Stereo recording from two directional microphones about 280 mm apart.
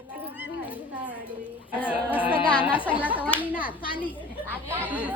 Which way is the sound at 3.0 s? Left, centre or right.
Centre.